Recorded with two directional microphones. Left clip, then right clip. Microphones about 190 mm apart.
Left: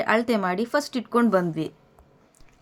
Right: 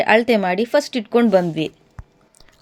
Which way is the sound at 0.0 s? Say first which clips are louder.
Right 7 dB; 15° right (ahead or behind).